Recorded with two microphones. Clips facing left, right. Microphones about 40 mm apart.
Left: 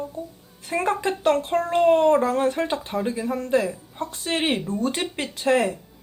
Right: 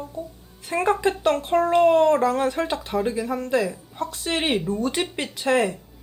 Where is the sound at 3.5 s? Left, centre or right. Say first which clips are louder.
Left 1 dB; centre.